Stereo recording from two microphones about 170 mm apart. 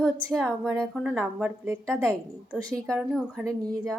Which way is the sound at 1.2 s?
10° right (ahead or behind).